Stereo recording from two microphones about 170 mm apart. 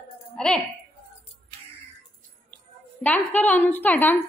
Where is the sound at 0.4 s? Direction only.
5° left (ahead or behind).